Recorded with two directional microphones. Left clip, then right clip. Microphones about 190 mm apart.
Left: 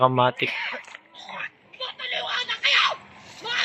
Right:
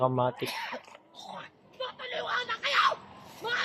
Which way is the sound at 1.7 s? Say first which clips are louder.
Left 6 dB; 20° right (ahead or behind).